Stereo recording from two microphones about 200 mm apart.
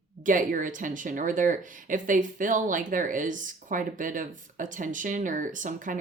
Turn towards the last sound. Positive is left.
turn(degrees=-40)  # may be behind; listen again after turning